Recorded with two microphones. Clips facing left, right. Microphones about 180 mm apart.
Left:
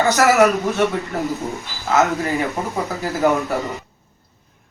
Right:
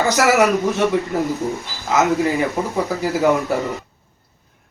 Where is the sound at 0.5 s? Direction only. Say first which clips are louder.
Right 2 dB; centre (ahead or behind).